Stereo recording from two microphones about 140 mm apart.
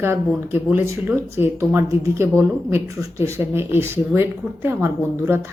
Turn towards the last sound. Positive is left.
turn(degrees=-15)  # may be behind; listen again after turning